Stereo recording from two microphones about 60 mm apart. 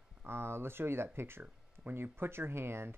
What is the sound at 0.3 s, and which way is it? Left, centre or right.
Speech, right.